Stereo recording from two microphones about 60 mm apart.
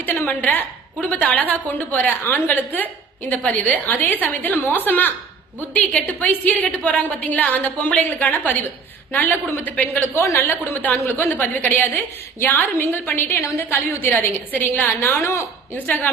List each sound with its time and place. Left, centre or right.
1.0 s a woman's voice: left
10.0 s a woman's voice: left
10.4 s a woman's voice: left
15.1 s a woman's voice: left